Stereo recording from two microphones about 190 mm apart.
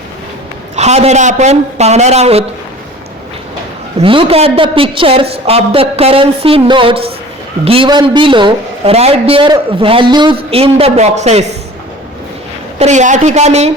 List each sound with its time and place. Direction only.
0.8 s speech: 35° right (ahead or behind)
3.9 s a woman's voice: 30° right (ahead or behind)
12.8 s speech: 40° right (ahead or behind)